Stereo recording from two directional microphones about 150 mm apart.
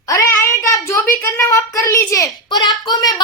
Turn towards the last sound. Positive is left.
turn(degrees=25)  # may be behind; listen again after turning